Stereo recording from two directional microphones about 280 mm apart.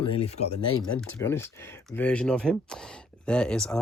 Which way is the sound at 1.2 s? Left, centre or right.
Centre.